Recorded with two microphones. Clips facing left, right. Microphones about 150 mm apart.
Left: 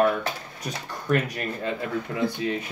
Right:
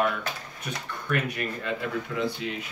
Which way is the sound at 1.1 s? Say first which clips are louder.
Left 5 dB; 35° left (ahead or behind).